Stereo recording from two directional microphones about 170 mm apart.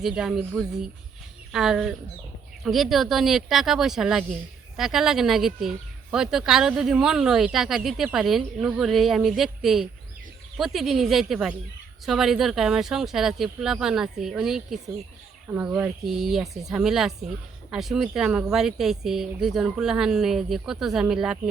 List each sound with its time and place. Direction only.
0.0 s speech: 5° right (ahead or behind)